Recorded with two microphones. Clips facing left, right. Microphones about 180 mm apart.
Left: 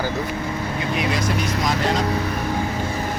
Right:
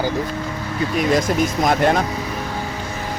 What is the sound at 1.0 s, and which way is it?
Speech, 45° right (ahead or behind).